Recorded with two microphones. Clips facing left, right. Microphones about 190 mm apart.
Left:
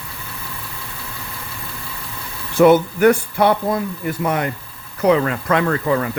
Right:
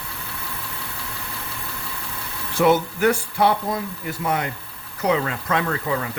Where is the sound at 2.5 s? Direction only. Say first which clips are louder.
Left 6 dB; 55° left (ahead or behind).